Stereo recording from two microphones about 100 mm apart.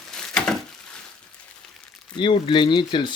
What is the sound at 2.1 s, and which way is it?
Speech, 60° left (ahead or behind).